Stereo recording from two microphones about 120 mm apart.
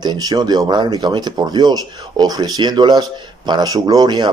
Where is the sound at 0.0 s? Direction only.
35° right (ahead or behind).